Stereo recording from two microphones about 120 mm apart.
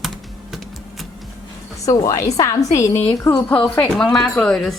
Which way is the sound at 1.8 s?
25° left (ahead or behind).